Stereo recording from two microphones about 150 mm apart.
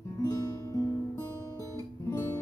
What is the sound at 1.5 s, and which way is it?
Music, 20° left (ahead or behind).